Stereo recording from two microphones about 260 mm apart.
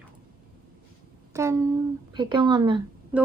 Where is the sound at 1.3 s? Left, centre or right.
Centre.